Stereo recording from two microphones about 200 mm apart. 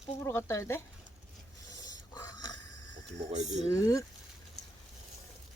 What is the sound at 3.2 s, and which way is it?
Speech, 35° right (ahead or behind).